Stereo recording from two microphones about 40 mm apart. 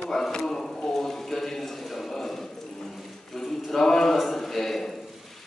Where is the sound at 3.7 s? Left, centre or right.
Centre.